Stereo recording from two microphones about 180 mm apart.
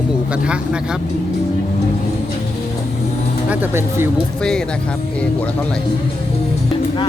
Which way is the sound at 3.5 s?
10° right (ahead or behind).